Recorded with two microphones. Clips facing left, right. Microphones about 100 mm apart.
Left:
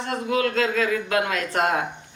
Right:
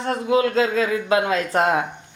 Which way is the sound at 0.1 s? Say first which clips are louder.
Right 5 dB; 25° right (ahead or behind).